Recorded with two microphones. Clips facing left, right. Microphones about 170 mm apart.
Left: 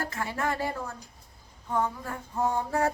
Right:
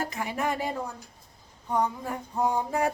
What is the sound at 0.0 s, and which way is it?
Speech, 15° right (ahead or behind).